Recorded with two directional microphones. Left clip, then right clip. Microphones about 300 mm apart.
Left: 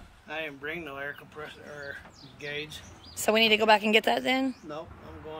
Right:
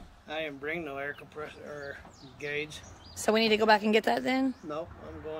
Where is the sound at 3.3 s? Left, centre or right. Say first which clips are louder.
Left 2 dB; centre.